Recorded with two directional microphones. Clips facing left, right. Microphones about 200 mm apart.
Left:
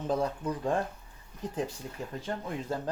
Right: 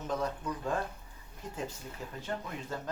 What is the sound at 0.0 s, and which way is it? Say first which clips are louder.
Speech: left 4 dB; 35° left (ahead or behind).